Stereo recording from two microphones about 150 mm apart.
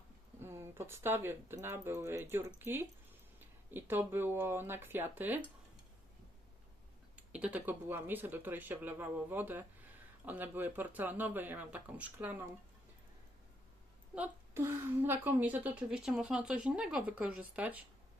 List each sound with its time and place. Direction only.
0.4 s a woman's voice: 20° right (ahead or behind)
7.2 s a woman's voice: 10° right (ahead or behind)
14.2 s a woman's voice: 15° right (ahead or behind)